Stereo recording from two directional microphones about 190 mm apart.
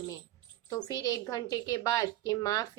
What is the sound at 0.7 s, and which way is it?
A woman's voice, 20° left (ahead or behind).